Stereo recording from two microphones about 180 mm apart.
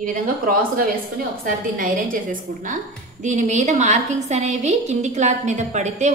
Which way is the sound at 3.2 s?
40° right (ahead or behind).